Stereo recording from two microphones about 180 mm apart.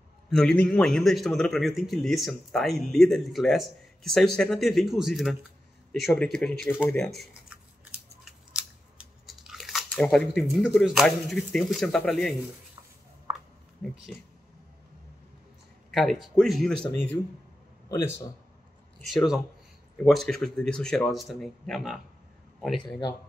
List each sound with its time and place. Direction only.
0.3 s a man's voice: 5° left (ahead or behind)
7.2 s scissors: 5° right (ahead or behind)
8.9 s speech: centre (ahead or behind)
13.3 s a sound: 15° right (ahead or behind)
13.8 s a man's voice: 5° left (ahead or behind)
15.9 s a man's voice: centre (ahead or behind)
18.9 s a man's voice: centre (ahead or behind)